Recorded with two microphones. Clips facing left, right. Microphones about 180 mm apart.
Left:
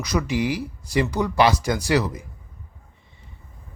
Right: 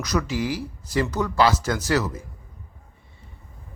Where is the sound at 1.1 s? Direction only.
15° left (ahead or behind).